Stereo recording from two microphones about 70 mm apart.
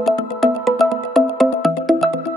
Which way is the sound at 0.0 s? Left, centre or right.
Centre.